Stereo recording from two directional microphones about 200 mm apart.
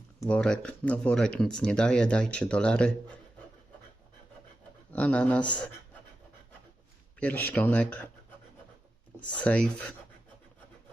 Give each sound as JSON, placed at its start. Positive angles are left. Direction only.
{"t": 0.2, "sound": "speech", "side_deg": 5}
{"t": 4.9, "sound": "speech", "side_deg": 5}
{"t": 7.2, "sound": "speech", "side_deg": 10}
{"t": 9.4, "sound": "speech", "side_deg": 5}